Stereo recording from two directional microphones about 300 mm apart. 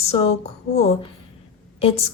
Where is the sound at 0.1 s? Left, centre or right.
Centre.